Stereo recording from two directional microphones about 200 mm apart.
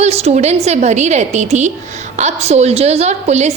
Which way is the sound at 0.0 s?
30° right (ahead or behind).